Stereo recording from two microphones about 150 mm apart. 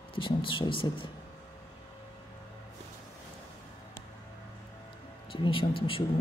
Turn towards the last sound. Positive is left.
turn(degrees=35)  # may be behind; listen again after turning